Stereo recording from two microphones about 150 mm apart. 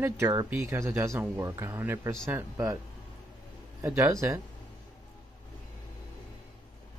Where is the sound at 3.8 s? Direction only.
20° right (ahead or behind).